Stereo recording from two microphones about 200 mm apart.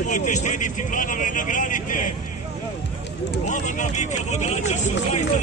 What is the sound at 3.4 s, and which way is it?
Speech, 35° left (ahead or behind).